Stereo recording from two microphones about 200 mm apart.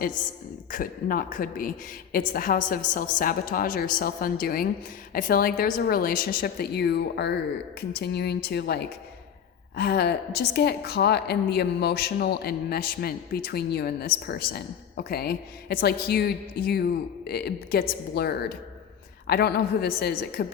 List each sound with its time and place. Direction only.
0.7 s a woman's voice: 45° left (ahead or behind)